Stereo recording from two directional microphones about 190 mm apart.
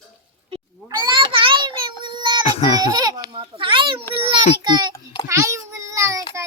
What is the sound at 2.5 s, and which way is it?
Baby cry, 35° left (ahead or behind).